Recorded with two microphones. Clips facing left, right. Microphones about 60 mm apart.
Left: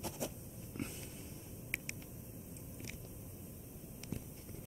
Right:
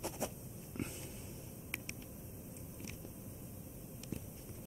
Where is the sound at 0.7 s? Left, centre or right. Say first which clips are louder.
Right 1 dB; centre.